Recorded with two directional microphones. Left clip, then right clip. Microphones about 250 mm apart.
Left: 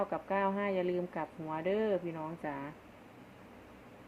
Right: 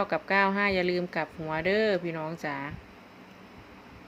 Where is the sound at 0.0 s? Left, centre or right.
Right.